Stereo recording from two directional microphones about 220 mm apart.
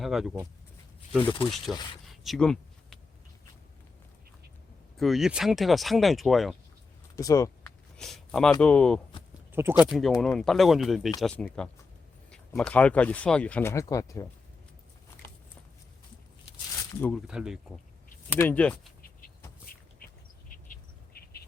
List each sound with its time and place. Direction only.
0.0 s speech: centre (ahead or behind)
1.2 s speech: 20° left (ahead or behind)
2.2 s a sound: centre (ahead or behind)
4.9 s speech: centre (ahead or behind)
7.2 s speech: 15° left (ahead or behind)
7.9 s speech: centre (ahead or behind)
9.5 s speech: 10° right (ahead or behind); by 14.3 s 15° left (ahead or behind)
17.2 s speech: 5° right (ahead or behind)
20.5 s bird: 40° left (ahead or behind)